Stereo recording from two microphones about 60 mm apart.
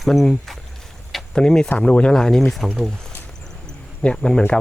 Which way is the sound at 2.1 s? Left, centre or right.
Centre.